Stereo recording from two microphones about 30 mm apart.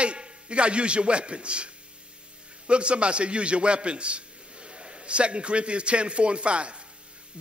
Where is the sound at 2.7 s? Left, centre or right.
Right.